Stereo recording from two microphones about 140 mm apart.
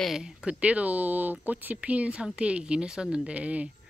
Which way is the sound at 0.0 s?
5° right (ahead or behind).